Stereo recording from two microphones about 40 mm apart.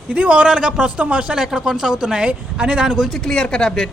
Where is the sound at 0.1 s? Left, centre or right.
Right.